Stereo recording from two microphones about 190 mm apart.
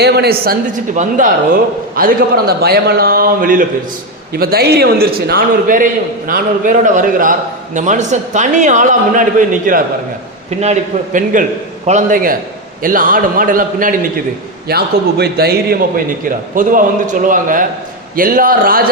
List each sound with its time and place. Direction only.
0.0 s a man's voice: 60° right (ahead or behind)
0.9 s a man's voice: 40° right (ahead or behind)
16.6 s a man's voice: 45° right (ahead or behind)